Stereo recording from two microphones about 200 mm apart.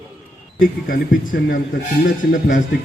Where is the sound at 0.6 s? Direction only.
45° left (ahead or behind).